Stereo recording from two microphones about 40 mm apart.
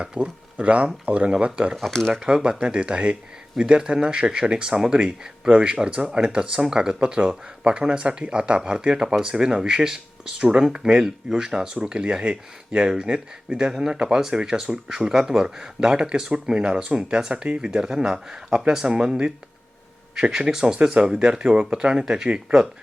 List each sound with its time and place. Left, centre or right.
0.0 s speech: right
1.7 s speech: centre
2.2 s speech: right
20.5 s speech: centre